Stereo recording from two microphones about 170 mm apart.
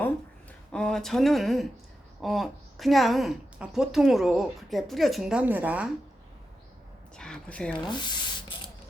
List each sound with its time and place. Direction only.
0.7 s a woman's voice: 5° left (ahead or behind)
7.2 s speech: 5° left (ahead or behind)
7.9 s a sound: 25° left (ahead or behind)